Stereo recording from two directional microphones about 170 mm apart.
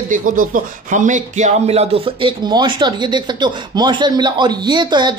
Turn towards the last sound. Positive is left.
turn(degrees=-25)  # may be behind; listen again after turning